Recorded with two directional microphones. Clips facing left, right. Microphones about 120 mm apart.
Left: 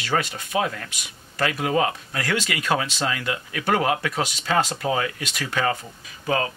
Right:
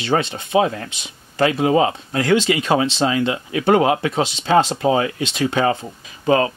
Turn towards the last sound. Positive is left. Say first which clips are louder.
# right 8 dB
turn(degrees=-30)  # may be behind; listen again after turning